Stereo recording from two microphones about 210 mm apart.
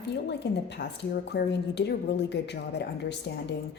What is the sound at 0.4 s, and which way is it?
Speech, 50° left (ahead or behind).